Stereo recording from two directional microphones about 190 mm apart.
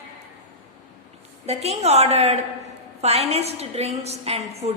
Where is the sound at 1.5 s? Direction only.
35° right (ahead or behind).